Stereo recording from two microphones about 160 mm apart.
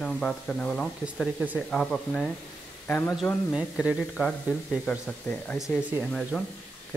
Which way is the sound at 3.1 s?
Centre (ahead or behind).